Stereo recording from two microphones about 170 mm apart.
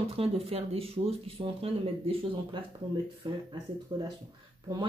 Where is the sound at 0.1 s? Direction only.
35° right (ahead or behind).